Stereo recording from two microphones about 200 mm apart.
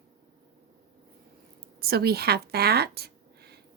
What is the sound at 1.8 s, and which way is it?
A woman's voice, 50° right (ahead or behind).